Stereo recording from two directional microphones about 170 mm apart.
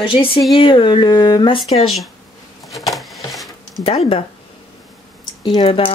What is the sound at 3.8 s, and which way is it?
Speech, 35° left (ahead or behind).